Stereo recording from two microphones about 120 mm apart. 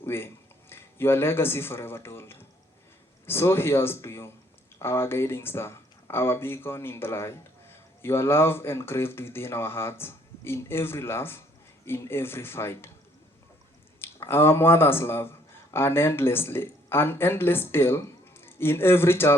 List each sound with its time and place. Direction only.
0.0 s a sound: 20° left (ahead or behind)
0.7 s speech: 20° left (ahead or behind)
14.0 s speech: 20° left (ahead or behind)